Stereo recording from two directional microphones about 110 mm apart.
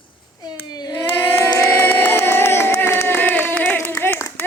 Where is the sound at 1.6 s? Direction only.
20° left (ahead or behind).